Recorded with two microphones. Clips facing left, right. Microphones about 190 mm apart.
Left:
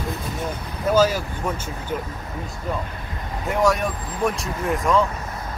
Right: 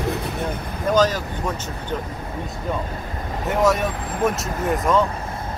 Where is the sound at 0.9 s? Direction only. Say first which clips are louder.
Even; 10° left (ahead or behind).